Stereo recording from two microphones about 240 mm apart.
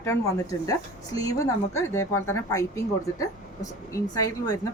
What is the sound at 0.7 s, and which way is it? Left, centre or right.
A woman's voice, centre.